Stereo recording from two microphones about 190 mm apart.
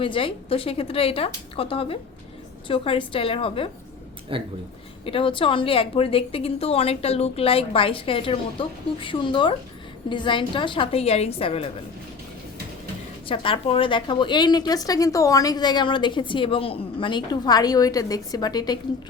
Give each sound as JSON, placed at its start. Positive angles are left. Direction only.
{"t": 0.0, "sound": "a woman's voice", "side_deg": 25}
{"t": 4.3, "sound": "speech", "side_deg": -30}
{"t": 5.0, "sound": "a woman's voice", "side_deg": 30}
{"t": 13.2, "sound": "a woman's voice", "side_deg": 25}